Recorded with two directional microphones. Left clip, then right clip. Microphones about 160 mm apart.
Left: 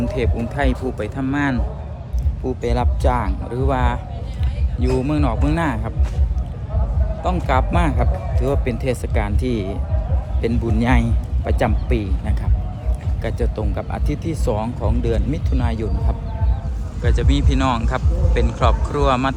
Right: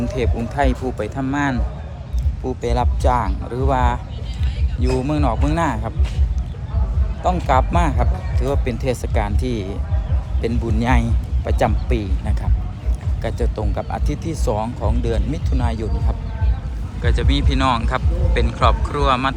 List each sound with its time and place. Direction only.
0.0 s speech: 10° left (ahead or behind)
7.2 s a man's voice: 10° left (ahead or behind)